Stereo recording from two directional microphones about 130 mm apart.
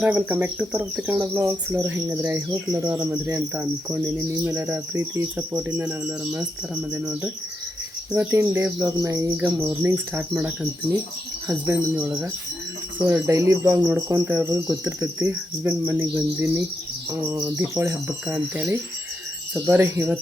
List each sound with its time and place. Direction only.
0.0 s speech: 15° right (ahead or behind)
1.2 s cricket: 20° right (ahead or behind)
2.5 s cricket: 30° right (ahead or behind)
5.7 s speech: 15° right (ahead or behind)
6.9 s cricket: 20° right (ahead or behind)
9.6 s speech: 20° right (ahead or behind)
11.4 s cricket: 20° right (ahead or behind)
19.5 s speech: 20° right (ahead or behind)